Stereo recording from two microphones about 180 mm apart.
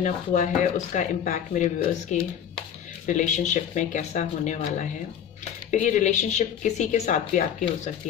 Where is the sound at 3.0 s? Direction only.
40° left (ahead or behind).